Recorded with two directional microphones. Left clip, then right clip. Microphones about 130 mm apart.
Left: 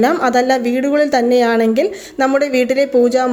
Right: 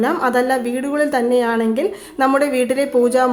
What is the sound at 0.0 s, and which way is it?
A woman's voice, 25° left (ahead or behind).